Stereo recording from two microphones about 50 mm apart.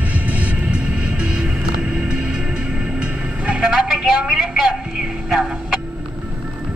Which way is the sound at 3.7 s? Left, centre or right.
Centre.